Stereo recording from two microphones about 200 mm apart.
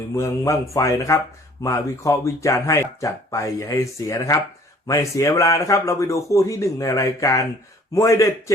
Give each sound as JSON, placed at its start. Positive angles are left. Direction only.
{"t": 0.1, "sound": "speech", "side_deg": 15}